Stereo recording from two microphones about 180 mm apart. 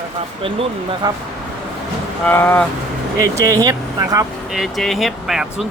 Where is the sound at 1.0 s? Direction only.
20° right (ahead or behind).